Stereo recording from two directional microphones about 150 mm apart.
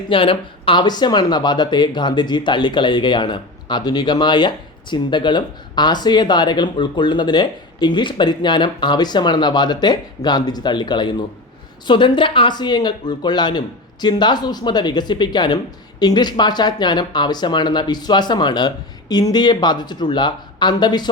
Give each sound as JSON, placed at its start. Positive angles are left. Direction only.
{"t": 0.1, "sound": "speech", "side_deg": 35}